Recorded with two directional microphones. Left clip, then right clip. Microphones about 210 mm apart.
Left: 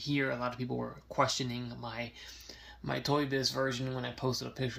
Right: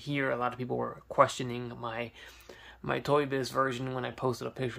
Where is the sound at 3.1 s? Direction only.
10° right (ahead or behind).